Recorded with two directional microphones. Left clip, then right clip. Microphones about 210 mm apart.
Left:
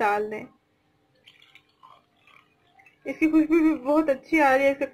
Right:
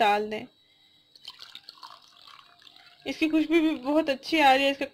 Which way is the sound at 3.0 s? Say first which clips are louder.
Left 4 dB; 55° right (ahead or behind).